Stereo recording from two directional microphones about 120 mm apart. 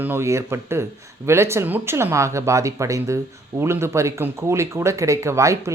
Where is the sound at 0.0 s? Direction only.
20° right (ahead or behind).